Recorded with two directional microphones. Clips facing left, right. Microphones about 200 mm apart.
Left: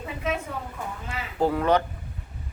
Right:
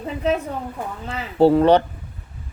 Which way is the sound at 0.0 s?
30° right (ahead or behind).